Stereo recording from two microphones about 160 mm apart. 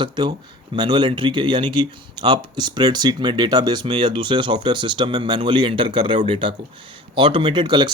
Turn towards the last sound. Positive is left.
turn(degrees=-30)  # may be behind; listen again after turning